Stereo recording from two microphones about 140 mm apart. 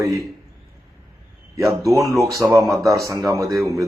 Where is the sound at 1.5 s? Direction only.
20° right (ahead or behind).